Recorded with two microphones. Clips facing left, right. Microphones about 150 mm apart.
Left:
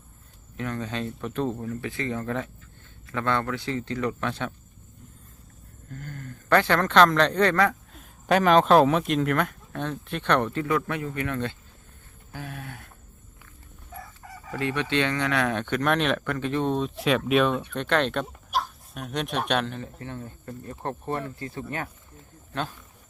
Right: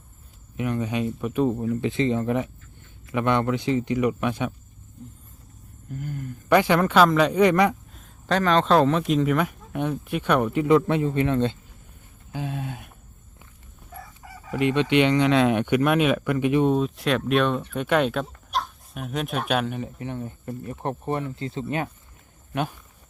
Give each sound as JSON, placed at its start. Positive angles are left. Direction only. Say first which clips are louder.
{"t": 0.5, "sound": "speech", "louder": "right 5 dB", "side_deg": -15}
{"t": 5.9, "sound": "speech", "louder": "right 6 dB", "side_deg": -10}
{"t": 7.9, "sound": "speech", "louder": "left 2 dB", "side_deg": 10}
{"t": 12.3, "sound": "a sound", "louder": "right 7 dB", "side_deg": -20}
{"t": 13.9, "sound": "chicken", "louder": "even", "side_deg": 0}
{"t": 14.6, "sound": "speech", "louder": "right 6 dB", "side_deg": -20}
{"t": 17.7, "sound": "speech", "louder": "right 4 dB", "side_deg": -10}